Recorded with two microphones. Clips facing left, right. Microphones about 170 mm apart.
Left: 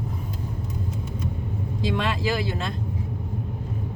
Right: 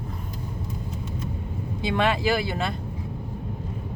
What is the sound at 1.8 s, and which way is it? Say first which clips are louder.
Speech: right 3 dB; 65° right (ahead or behind).